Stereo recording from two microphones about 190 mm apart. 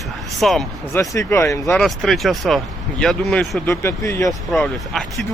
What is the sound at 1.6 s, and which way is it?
Speech, centre (ahead or behind).